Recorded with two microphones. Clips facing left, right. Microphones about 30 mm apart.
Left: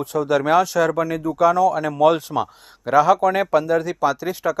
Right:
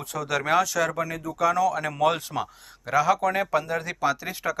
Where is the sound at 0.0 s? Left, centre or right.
Left.